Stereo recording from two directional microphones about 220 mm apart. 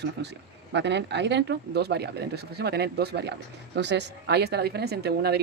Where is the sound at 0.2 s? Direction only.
50° right (ahead or behind).